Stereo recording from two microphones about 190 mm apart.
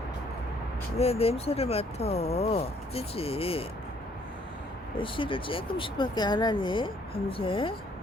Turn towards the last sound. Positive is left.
turn(degrees=30)  # may be behind; listen again after turning